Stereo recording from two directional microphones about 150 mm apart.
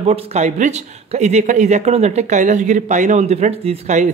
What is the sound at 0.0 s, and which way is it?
A man's voice, 45° right (ahead or behind).